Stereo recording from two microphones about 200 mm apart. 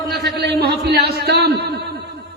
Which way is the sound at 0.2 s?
55° right (ahead or behind).